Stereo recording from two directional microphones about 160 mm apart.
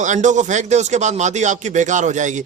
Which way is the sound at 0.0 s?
50° right (ahead or behind).